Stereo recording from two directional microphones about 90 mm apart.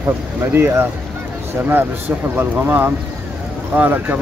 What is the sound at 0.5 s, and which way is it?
Speech, 30° right (ahead or behind).